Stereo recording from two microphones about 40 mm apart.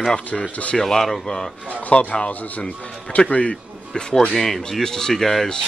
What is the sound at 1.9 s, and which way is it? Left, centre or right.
A man's voice, left.